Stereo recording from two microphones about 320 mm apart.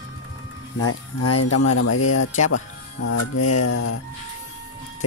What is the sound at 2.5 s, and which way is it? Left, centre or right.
Speech, left.